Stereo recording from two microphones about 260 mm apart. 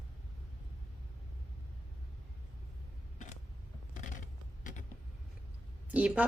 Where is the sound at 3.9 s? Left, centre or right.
Left.